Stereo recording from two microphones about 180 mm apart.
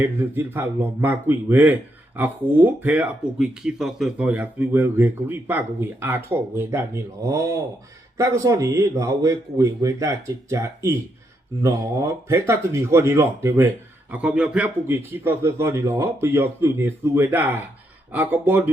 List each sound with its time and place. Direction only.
0.0 s a man's voice: 10° right (ahead or behind)